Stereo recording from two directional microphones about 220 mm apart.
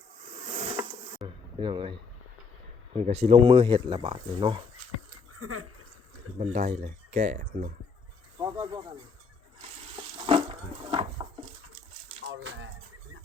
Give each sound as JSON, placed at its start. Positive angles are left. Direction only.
{"t": 0.4, "sound": "bee", "side_deg": -30}
{"t": 1.2, "sound": "a sound", "side_deg": -25}
{"t": 1.5, "sound": "speech", "side_deg": -20}
{"t": 5.1, "sound": "a sound", "side_deg": -80}
{"t": 6.4, "sound": "speech", "side_deg": -35}
{"t": 8.4, "sound": "speech", "side_deg": -20}
{"t": 9.6, "sound": "stir", "side_deg": -30}
{"t": 12.3, "sound": "speech", "side_deg": -55}